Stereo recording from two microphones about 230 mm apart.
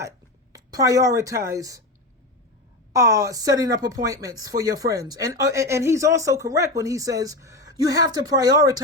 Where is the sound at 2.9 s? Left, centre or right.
Centre.